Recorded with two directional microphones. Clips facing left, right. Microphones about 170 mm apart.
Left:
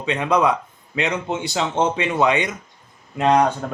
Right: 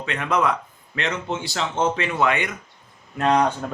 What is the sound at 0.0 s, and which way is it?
Speech, 15° left (ahead or behind).